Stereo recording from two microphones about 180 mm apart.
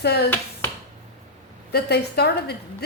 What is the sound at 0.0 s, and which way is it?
Speech, 65° left (ahead or behind).